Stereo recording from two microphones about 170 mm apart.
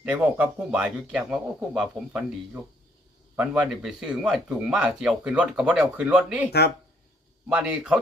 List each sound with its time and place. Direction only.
0.0 s speech: 5° right (ahead or behind)